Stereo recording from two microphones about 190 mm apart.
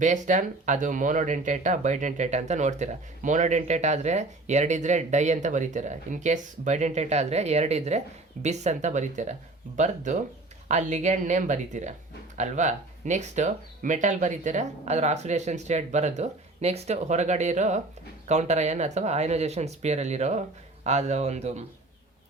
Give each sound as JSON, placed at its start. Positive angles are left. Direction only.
{"t": 0.0, "sound": "speech", "side_deg": -40}